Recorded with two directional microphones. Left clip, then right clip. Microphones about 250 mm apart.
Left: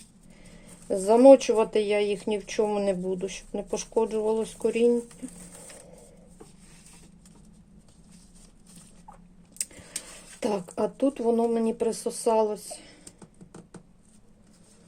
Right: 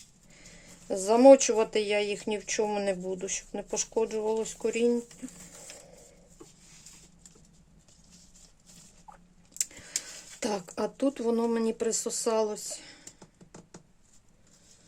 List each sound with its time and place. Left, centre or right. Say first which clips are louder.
0.9 s speech: left 2 dB; centre
9.6 s a sound: right 3 dB; centre
10.4 s speech: left 4 dB; centre